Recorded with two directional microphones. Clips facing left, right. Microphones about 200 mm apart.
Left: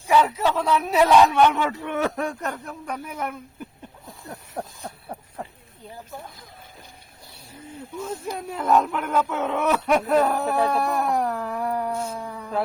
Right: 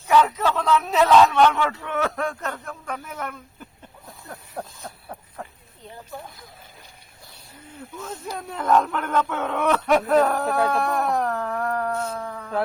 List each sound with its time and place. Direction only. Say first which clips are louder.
0.1 s speech: even; 10° left (ahead or behind)
4.3 s a sound: left 1 dB; 20° left (ahead or behind)
7.9 s speech: left 3 dB; 10° left (ahead or behind)